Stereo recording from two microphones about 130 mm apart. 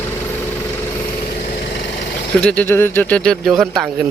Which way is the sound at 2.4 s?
5° left (ahead or behind).